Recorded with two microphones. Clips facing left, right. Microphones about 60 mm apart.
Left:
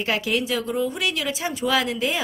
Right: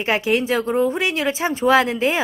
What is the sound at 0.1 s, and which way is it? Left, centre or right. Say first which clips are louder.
Speech: right 6 dB; right.